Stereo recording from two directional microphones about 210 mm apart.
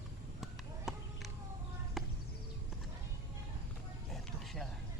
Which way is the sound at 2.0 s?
Centre (ahead or behind).